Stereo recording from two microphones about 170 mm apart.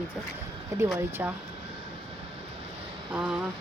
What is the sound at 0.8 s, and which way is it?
Speech, 5° right (ahead or behind).